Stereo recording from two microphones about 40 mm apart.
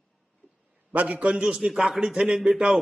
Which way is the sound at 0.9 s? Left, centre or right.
Right.